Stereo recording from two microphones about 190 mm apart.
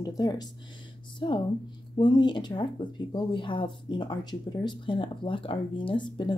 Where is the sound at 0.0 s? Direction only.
20° left (ahead or behind).